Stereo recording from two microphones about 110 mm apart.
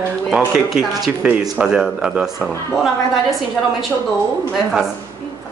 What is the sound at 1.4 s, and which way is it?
Speech, 5° right (ahead or behind).